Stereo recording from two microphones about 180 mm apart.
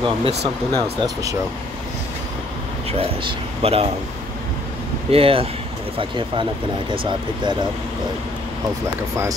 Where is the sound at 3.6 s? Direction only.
35° right (ahead or behind).